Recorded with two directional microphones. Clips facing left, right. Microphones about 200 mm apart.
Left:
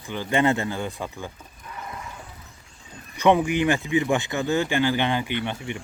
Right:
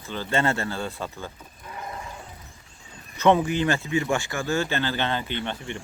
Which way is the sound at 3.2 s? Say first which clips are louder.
Left 1 dB; 15° left (ahead or behind).